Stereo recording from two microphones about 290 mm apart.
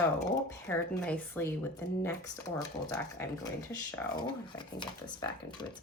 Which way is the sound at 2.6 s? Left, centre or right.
Centre.